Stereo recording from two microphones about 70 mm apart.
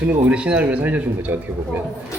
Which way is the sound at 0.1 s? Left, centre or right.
Centre.